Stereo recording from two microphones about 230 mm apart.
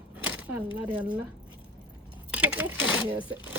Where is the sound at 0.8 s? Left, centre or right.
Centre.